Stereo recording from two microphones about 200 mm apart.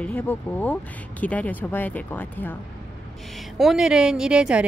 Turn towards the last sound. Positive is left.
turn(degrees=-5)  # may be behind; listen again after turning